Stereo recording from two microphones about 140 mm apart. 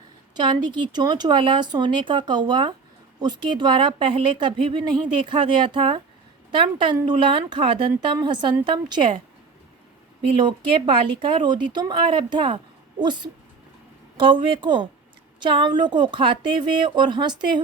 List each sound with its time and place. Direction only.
0.3 s speech: 35° right (ahead or behind)
10.3 s speech: 35° right (ahead or behind)